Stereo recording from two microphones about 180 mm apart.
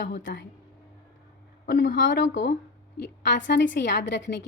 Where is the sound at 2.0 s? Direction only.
80° left.